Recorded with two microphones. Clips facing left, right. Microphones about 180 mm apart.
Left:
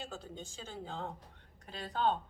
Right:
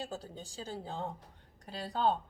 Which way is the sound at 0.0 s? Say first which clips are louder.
Right 3 dB; 35° right (ahead or behind).